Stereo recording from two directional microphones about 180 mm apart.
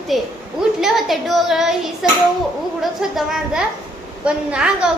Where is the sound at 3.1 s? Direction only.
Centre (ahead or behind).